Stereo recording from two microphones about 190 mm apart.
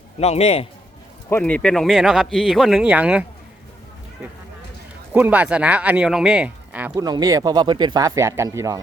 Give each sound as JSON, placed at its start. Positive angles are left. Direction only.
{"t": 0.2, "sound": "a man's voice", "side_deg": 35}
{"t": 1.3, "sound": "speech", "side_deg": 10}
{"t": 6.9, "sound": "speech", "side_deg": -20}